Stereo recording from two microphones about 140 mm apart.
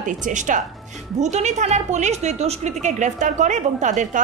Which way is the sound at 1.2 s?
55° right (ahead or behind).